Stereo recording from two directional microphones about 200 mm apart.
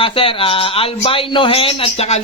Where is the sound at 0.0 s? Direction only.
25° left (ahead or behind).